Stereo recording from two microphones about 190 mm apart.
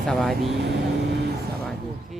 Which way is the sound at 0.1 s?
Centre (ahead or behind).